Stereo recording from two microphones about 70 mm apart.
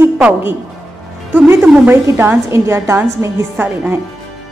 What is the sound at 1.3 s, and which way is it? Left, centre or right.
A woman's voice, right.